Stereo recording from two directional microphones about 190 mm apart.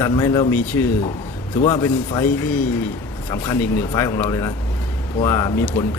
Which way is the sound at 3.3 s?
15° left (ahead or behind).